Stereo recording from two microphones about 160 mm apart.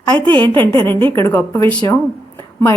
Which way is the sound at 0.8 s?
15° left (ahead or behind).